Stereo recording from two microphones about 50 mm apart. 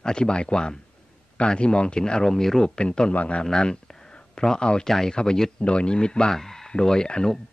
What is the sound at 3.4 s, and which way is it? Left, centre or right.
Speech, centre.